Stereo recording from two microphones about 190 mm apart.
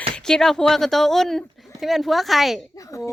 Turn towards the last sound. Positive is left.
turn(degrees=15)  # may be behind; listen again after turning